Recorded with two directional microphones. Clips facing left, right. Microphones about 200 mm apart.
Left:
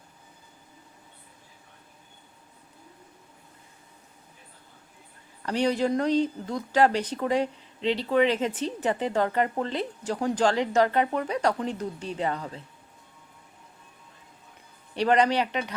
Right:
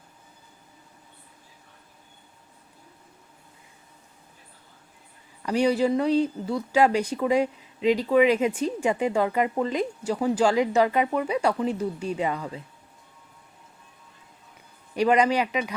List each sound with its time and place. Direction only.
5.5 s speech: 10° right (ahead or behind)
14.9 s speech: 10° right (ahead or behind)